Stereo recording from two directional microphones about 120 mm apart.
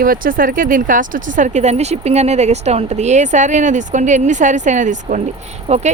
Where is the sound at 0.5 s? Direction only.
90° right.